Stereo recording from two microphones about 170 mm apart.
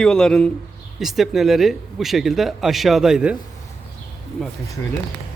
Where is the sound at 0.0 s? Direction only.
5° left (ahead or behind).